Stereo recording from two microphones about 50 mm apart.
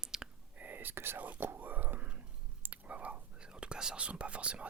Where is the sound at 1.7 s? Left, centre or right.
Right.